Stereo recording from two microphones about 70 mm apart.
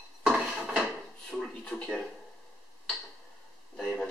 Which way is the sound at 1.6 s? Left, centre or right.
Centre.